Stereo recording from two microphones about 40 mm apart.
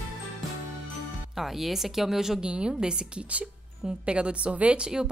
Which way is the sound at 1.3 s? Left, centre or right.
Centre.